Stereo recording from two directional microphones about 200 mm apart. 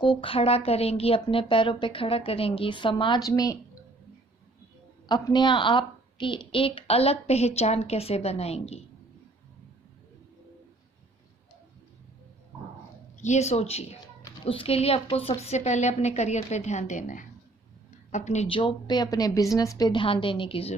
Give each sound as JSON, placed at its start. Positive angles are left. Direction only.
{"t": 0.0, "sound": "a woman's voice", "side_deg": 25}
{"t": 5.0, "sound": "a woman's voice", "side_deg": 20}
{"t": 13.2, "sound": "a woman's voice", "side_deg": 35}